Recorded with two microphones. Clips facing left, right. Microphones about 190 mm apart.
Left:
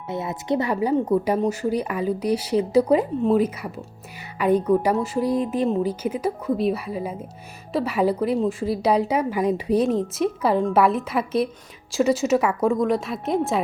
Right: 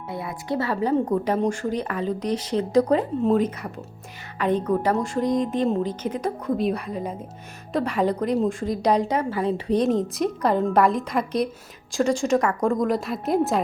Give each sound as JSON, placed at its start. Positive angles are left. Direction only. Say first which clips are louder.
{"t": 0.1, "sound": "a woman's voice", "louder": "left 4 dB", "side_deg": 20}